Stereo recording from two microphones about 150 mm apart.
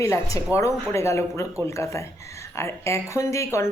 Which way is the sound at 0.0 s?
20° left (ahead or behind).